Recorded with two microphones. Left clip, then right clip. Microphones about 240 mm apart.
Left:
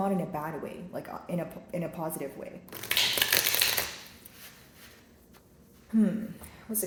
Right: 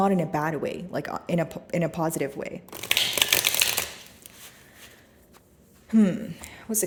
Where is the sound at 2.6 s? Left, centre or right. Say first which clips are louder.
Right 2 dB; right.